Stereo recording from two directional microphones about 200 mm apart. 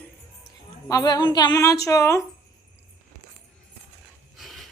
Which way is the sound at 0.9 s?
20° left (ahead or behind).